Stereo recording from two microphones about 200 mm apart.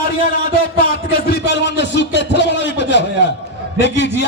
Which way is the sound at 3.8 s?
60° left (ahead or behind).